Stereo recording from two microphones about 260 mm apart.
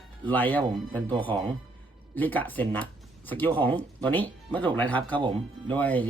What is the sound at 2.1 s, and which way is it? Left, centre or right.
Speech, centre.